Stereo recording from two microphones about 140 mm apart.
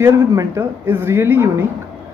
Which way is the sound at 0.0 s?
20° right (ahead or behind).